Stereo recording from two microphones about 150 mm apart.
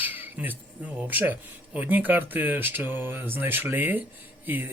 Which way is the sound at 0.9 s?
10° right (ahead or behind).